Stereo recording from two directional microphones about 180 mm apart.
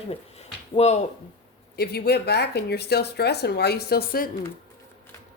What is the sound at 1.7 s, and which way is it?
Speech, 60° left (ahead or behind).